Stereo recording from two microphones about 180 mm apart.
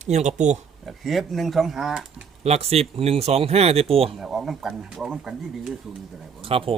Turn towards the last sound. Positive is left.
turn(degrees=-30)  # may be behind; listen again after turning